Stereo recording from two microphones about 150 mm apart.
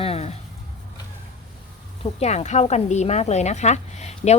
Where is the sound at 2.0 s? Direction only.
45° left (ahead or behind).